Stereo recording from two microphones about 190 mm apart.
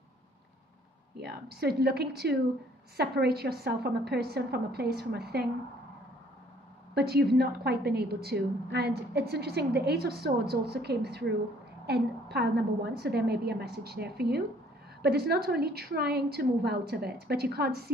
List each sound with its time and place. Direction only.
1.1 s a woman's voice: 55° right (ahead or behind)
7.0 s a woman's voice: 60° right (ahead or behind)